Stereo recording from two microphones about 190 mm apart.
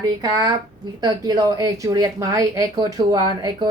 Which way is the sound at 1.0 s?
20° right (ahead or behind).